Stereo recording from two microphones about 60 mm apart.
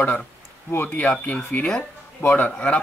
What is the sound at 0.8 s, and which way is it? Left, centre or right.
A man's voice, left.